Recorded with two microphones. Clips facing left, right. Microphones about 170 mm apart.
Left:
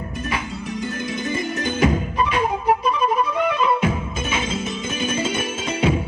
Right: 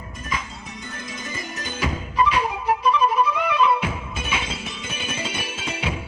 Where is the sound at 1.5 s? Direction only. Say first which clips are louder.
Left 8 dB; 55° left (ahead or behind).